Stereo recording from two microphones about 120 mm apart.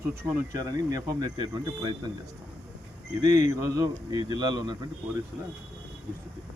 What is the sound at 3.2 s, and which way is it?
Speech, 30° right (ahead or behind).